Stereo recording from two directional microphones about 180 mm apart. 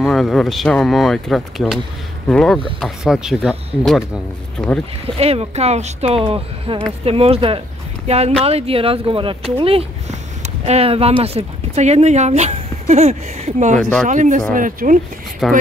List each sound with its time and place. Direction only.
0.0 s speech: centre (ahead or behind)
5.0 s speech: 35° right (ahead or behind)
13.7 s speech: 5° left (ahead or behind)
14.0 s speech: 45° right (ahead or behind)
15.4 s speech: centre (ahead or behind)